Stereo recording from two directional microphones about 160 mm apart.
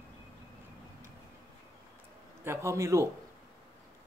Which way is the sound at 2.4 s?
15° right (ahead or behind).